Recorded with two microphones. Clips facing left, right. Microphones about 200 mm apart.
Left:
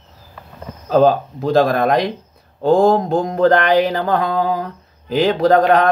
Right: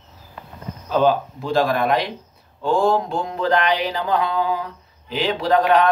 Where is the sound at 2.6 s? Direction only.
40° left (ahead or behind).